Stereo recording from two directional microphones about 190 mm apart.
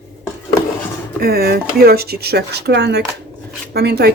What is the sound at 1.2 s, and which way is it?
Speech, 55° right (ahead or behind).